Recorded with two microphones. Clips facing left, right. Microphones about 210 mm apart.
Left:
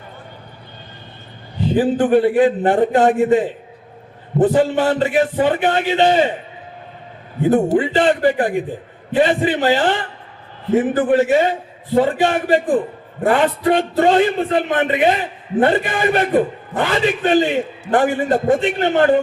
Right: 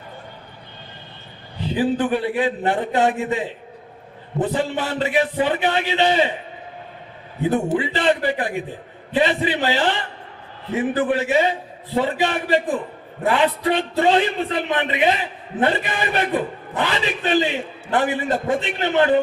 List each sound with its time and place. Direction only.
1.7 s a man's voice: 50° left (ahead or behind)
4.4 s a man's voice: 45° left (ahead or behind)
7.5 s a man's voice: 45° left (ahead or behind)